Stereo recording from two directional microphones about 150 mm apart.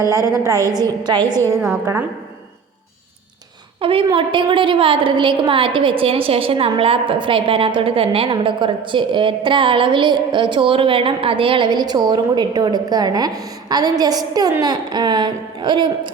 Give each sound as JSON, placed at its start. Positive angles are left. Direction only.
{"t": 0.4, "sound": "a woman's voice", "side_deg": -20}
{"t": 3.8, "sound": "a woman's voice", "side_deg": -40}